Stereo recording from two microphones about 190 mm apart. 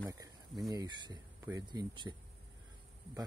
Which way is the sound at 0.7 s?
20° right (ahead or behind).